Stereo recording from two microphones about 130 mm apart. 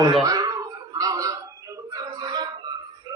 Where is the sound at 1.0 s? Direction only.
25° right (ahead or behind).